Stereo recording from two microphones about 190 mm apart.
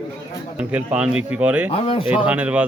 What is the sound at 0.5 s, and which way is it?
Speech, 5° right (ahead or behind).